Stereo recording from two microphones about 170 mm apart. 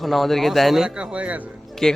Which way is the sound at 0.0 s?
Centre (ahead or behind).